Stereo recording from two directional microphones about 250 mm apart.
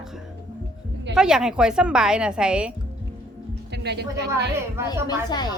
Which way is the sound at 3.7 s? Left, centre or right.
Right.